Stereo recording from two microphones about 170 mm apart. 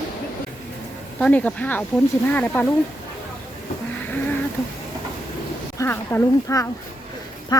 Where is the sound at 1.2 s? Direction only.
10° left (ahead or behind).